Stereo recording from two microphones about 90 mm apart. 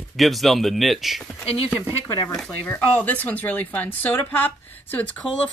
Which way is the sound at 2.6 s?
20° left (ahead or behind).